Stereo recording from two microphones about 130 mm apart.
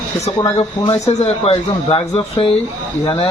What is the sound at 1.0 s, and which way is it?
Speech, 50° left (ahead or behind).